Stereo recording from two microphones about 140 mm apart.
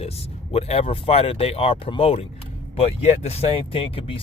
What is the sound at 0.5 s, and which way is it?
Speech, 45° left (ahead or behind).